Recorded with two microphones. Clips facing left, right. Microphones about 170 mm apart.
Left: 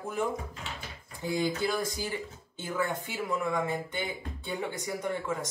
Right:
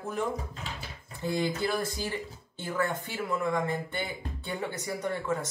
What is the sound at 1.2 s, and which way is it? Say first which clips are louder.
Speech: even; 15° left (ahead or behind).